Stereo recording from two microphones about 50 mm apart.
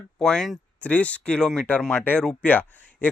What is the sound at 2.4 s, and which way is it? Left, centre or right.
Speech, left.